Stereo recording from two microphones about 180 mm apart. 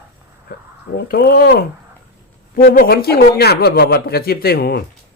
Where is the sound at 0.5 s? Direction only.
60° left (ahead or behind).